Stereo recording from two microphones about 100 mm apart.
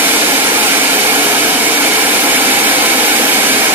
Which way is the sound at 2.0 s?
20° right (ahead or behind).